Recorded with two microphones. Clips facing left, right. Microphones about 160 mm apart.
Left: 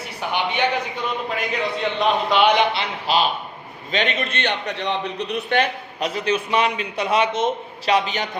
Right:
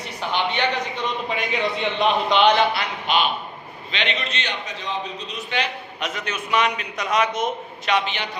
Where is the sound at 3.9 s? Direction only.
45° left (ahead or behind).